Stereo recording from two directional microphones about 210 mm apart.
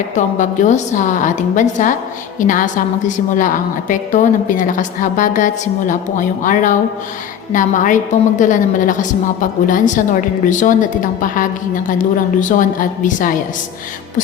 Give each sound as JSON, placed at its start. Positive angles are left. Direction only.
{"t": 0.2, "sound": "a woman's voice", "side_deg": 35}